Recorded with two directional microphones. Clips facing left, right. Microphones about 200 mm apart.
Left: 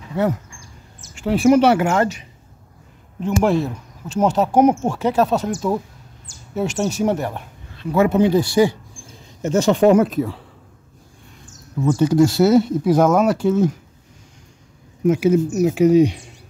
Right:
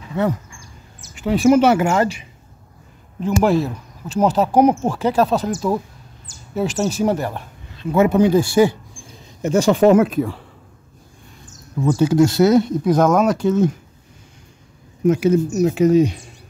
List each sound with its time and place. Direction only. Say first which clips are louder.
0.1 s speech: even; 10° left (ahead or behind)
7.8 s speech: right 1 dB; 20° right (ahead or behind)
8.6 s speech: right 1 dB; 20° left (ahead or behind)
9.4 s speech: right 1 dB; 10° right (ahead or behind)
10.0 s speech: right 1 dB; centre (ahead or behind)
11.8 s speech: even; 5° right (ahead or behind)
15.0 s speech: even; 10° left (ahead or behind)